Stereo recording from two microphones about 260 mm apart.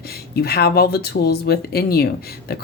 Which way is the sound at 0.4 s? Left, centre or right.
Left.